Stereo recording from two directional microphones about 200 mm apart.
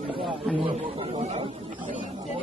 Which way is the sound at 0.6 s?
25° right (ahead or behind).